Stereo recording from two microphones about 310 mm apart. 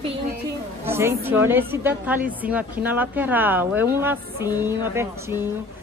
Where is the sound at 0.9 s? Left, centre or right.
Centre.